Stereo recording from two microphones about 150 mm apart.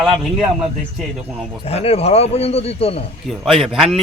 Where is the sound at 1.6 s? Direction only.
40° left (ahead or behind).